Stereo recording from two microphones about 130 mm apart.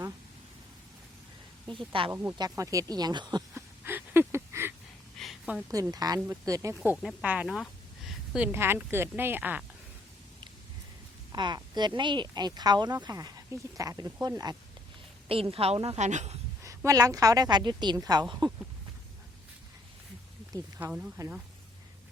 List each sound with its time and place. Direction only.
1.9 s a woman's voice: 40° right (ahead or behind)
2.4 s speech: 25° right (ahead or behind)
3.5 s a sound: 15° right (ahead or behind)
5.1 s a sound: centre (ahead or behind)
5.9 s a woman's voice: 30° right (ahead or behind)
6.9 s speech: centre (ahead or behind)
8.5 s speech: 20° right (ahead or behind)
11.3 s a woman's voice: 35° right (ahead or behind)
15.3 s a woman's voice: 45° right (ahead or behind)
16.0 s speech: 65° right (ahead or behind)
16.6 s a woman's voice: 25° right (ahead or behind)
20.7 s speech: 10° right (ahead or behind)